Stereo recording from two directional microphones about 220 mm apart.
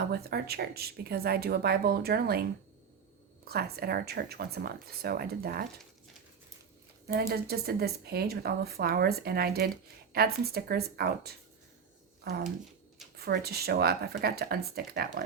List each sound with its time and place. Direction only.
0.0 s speech: 45° right (ahead or behind)
3.4 s speech: 45° right (ahead or behind)
7.1 s speech: 45° right (ahead or behind)
13.1 s speech: 45° right (ahead or behind)